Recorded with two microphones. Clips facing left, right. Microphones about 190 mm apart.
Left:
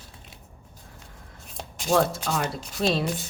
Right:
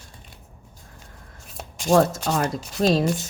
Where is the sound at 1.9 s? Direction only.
45° right (ahead or behind).